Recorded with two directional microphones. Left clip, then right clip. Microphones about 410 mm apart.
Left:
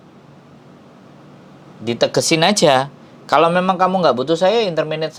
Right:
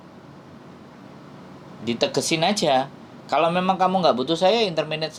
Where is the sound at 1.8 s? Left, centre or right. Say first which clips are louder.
Left 6 dB; left.